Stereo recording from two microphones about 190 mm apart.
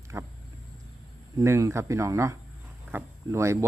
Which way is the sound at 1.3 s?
15° right (ahead or behind).